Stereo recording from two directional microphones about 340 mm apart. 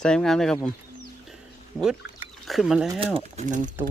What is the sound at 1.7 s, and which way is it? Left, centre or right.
Speech, centre.